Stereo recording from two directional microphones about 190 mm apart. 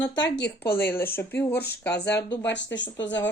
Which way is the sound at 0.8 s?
10° left (ahead or behind).